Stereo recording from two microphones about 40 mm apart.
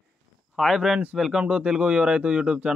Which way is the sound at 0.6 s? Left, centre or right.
Centre.